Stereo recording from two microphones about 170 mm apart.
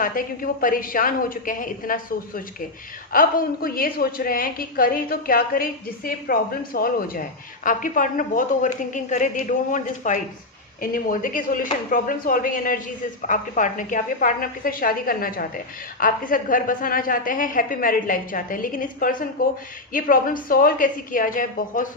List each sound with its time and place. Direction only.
0.0 s a woman's voice: 55° left (ahead or behind)